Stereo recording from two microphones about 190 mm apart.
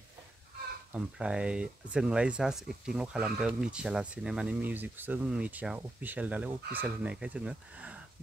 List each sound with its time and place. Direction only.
0.9 s speech: 5° right (ahead or behind)